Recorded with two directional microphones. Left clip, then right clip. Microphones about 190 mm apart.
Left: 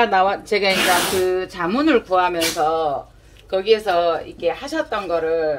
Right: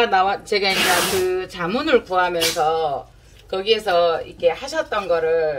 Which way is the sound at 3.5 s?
35° left (ahead or behind).